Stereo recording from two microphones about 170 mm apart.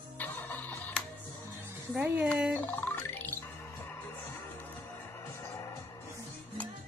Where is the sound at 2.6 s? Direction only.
10° left (ahead or behind).